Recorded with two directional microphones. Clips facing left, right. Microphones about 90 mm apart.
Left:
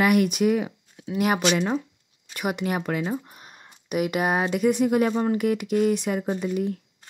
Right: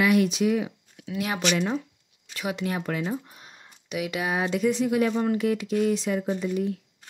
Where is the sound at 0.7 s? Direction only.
30° left (ahead or behind).